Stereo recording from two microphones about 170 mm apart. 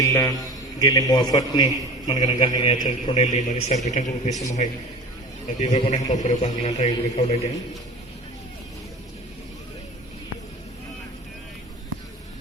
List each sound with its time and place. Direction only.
0.0 s a man's voice: 20° left (ahead or behind); by 7.3 s 40° left (ahead or behind)